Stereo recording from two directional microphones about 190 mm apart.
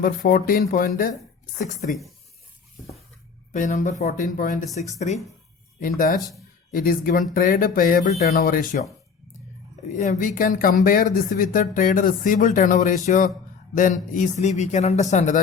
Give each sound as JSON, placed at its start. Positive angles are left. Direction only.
{"t": 0.0, "sound": "speech", "side_deg": 50}
{"t": 3.5, "sound": "a man's voice", "side_deg": 40}
{"t": 9.9, "sound": "a man's voice", "side_deg": 40}